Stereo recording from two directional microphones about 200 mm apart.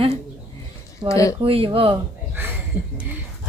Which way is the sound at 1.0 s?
15° left (ahead or behind).